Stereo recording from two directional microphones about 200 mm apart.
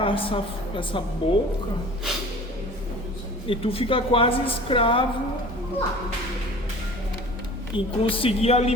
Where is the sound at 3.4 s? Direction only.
25° left (ahead or behind).